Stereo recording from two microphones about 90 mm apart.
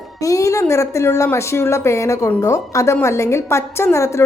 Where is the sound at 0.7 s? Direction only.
35° left (ahead or behind).